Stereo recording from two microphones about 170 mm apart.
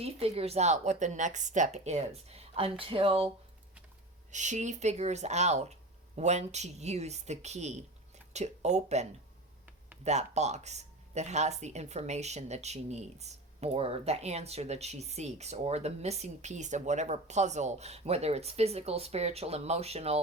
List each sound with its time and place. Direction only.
0.0 s speech: 35° right (ahead or behind)
4.3 s speech: 45° right (ahead or behind)